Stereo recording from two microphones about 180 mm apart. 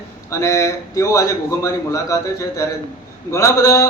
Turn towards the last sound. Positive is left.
turn(degrees=20)  # may be behind; listen again after turning